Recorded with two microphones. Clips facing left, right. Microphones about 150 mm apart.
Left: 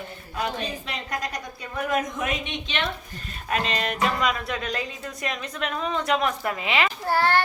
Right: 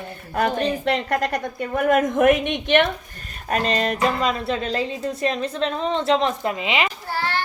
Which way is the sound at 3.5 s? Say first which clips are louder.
Right 5 dB; 40° right (ahead or behind).